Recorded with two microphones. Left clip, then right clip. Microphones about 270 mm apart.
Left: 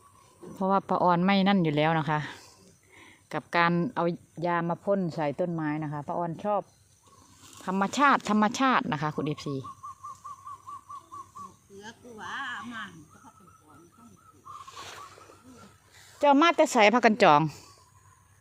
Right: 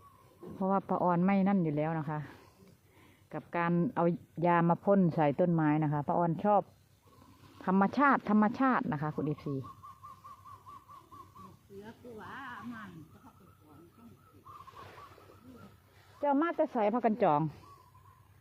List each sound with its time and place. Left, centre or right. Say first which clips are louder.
0.6 s speech: left 6 dB; centre
11.9 s a sound: left 9 dB; left
16.2 s a woman's voice: left 9 dB; left